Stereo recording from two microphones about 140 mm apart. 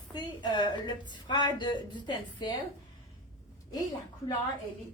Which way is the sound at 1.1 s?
30° left (ahead or behind).